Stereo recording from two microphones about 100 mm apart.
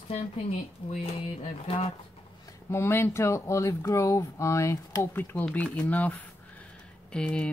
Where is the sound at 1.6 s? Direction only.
90° left.